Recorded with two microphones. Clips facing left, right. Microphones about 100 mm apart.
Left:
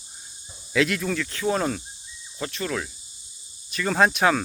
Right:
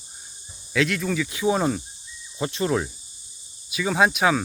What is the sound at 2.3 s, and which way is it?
Speech, 20° right (ahead or behind).